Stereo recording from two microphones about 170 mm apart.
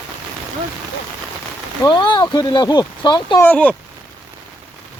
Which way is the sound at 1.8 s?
25° left (ahead or behind).